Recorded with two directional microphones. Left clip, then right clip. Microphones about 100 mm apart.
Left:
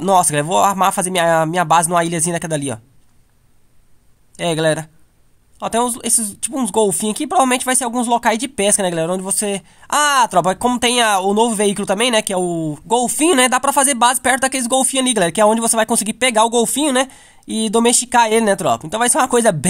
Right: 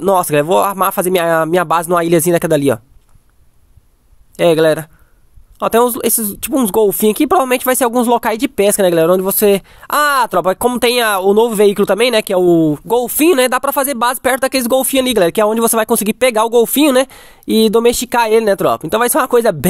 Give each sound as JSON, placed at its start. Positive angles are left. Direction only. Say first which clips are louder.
{"t": 0.0, "sound": "speech", "louder": "right 2 dB", "side_deg": -45}
{"t": 4.4, "sound": "speech", "louder": "right 7 dB", "side_deg": -50}
{"t": 12.8, "sound": "speech", "louder": "right 3 dB", "side_deg": -50}